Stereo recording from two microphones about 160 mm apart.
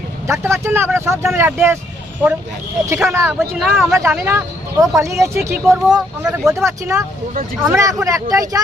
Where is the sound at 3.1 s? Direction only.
15° right (ahead or behind).